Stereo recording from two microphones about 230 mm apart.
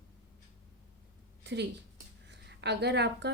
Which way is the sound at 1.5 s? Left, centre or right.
Right.